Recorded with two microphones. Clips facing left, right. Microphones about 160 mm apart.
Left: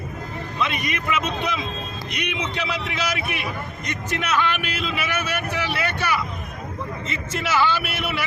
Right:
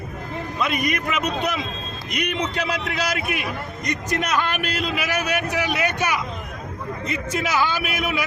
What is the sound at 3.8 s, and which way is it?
A man's voice, 40° right (ahead or behind).